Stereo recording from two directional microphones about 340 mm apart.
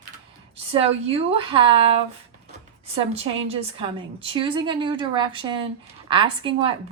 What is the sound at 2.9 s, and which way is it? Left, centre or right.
A woman's voice, centre.